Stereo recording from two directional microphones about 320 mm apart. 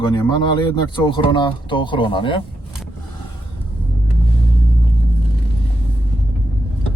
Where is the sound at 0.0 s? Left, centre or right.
Centre.